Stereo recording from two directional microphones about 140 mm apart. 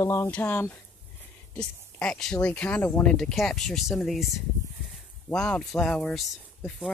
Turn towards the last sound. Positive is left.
turn(degrees=0)  # may be behind; listen again after turning